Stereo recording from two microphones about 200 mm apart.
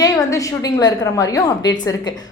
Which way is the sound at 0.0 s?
15° left (ahead or behind).